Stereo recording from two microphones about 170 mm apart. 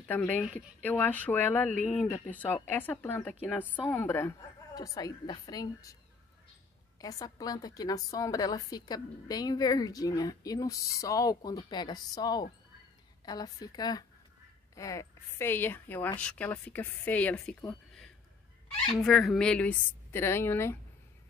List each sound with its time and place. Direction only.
0.1 s a woman's voice: 10° left (ahead or behind)
7.0 s a woman's voice: 20° left (ahead or behind)
18.9 s speech: centre (ahead or behind)